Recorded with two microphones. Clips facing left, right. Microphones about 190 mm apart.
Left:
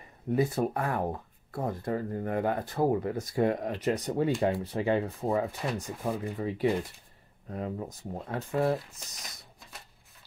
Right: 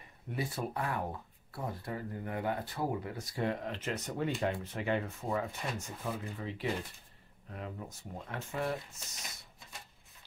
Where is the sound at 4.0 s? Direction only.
35° left (ahead or behind).